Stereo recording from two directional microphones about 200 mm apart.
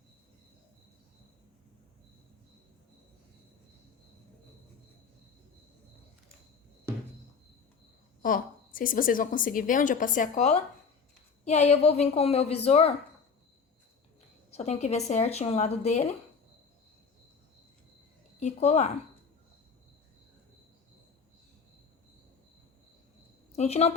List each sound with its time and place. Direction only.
8.2 s a woman's voice: 45° left (ahead or behind)
14.5 s a woman's voice: 35° left (ahead or behind)
18.3 s a woman's voice: 35° left (ahead or behind)
23.5 s a woman's voice: 30° left (ahead or behind)